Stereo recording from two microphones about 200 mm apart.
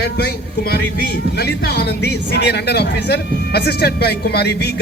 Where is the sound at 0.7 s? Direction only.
55° left (ahead or behind).